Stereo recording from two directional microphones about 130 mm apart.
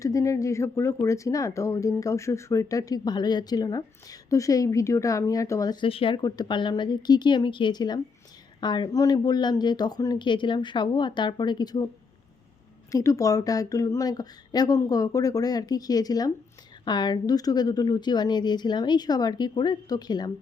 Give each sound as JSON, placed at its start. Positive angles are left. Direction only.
{"t": 0.0, "sound": "speech", "side_deg": 25}
{"t": 6.2, "sound": "a woman's voice", "side_deg": 30}
{"t": 12.9, "sound": "a woman's voice", "side_deg": 25}